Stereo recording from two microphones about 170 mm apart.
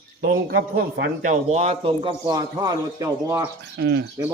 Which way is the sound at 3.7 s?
90° right.